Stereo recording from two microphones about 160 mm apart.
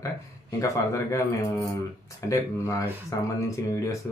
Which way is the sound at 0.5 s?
20° left (ahead or behind).